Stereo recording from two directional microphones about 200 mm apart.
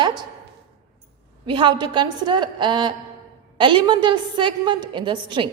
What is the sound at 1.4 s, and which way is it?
A woman's voice, 25° right (ahead or behind).